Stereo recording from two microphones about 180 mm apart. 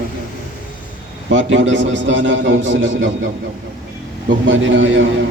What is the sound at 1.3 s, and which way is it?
A man's voice, 90° right.